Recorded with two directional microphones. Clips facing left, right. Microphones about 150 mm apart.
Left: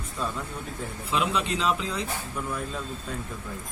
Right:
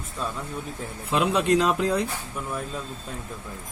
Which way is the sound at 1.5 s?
60° right (ahead or behind).